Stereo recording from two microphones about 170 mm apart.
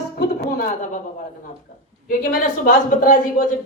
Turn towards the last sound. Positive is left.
turn(degrees=50)  # may be behind; listen again after turning